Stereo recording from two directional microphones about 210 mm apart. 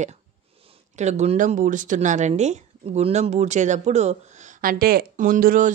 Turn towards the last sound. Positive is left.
turn(degrees=-40)  # may be behind; listen again after turning